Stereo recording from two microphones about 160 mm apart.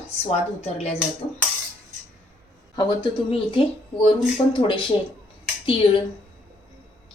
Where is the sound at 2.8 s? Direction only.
25° left (ahead or behind).